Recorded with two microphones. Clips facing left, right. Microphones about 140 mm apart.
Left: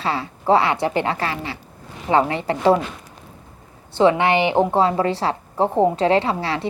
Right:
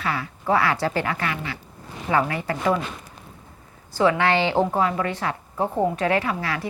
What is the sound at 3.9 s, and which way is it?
A woman's voice, 20° left (ahead or behind).